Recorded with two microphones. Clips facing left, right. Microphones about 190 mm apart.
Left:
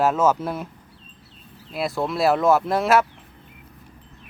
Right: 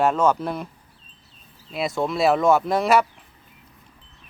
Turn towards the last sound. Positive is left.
turn(degrees=0)  # may be behind; listen again after turning